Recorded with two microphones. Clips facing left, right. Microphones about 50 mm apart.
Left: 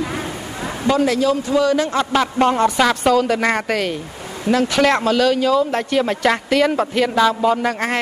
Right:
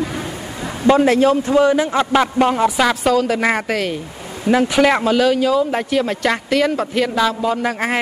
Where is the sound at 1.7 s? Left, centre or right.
Centre.